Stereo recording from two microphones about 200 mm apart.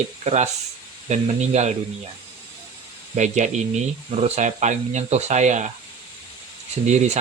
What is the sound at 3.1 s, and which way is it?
Speech, 35° right (ahead or behind).